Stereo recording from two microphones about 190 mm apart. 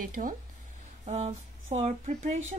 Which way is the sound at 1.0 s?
35° right (ahead or behind).